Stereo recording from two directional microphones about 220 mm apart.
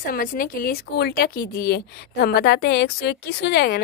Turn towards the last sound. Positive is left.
turn(degrees=50)  # may be behind; listen again after turning